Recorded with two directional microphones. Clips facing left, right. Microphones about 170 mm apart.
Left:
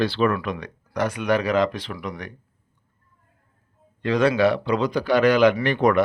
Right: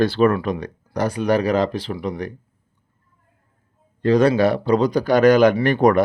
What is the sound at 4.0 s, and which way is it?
Speech, 40° right (ahead or behind).